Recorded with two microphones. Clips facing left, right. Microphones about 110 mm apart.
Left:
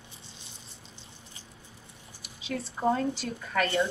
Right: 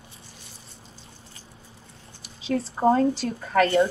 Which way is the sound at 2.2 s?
35° right (ahead or behind).